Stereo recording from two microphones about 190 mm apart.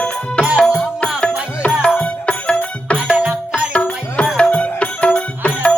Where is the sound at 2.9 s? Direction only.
5° right (ahead or behind).